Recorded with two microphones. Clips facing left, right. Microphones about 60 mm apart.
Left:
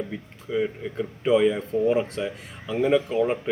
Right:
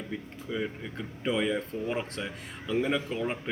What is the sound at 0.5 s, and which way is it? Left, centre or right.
A man's voice, centre.